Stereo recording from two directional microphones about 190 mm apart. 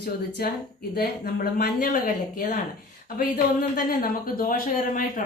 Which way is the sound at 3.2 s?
50° left (ahead or behind).